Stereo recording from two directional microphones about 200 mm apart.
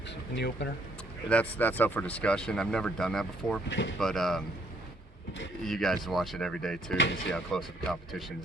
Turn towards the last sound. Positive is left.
turn(degrees=5)  # may be behind; listen again after turning